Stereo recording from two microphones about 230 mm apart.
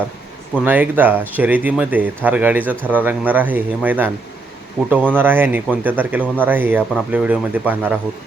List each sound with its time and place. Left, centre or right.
0.6 s speech: centre